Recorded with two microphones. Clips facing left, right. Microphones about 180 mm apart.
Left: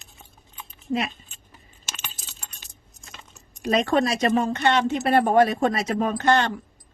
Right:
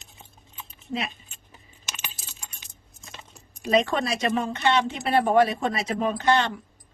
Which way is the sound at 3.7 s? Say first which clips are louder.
Left 2 dB; 45° left (ahead or behind).